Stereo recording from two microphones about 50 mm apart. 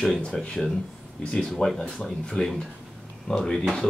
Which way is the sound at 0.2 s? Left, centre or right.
Left.